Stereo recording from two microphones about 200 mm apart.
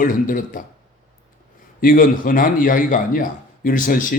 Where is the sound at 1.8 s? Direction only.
45° left (ahead or behind).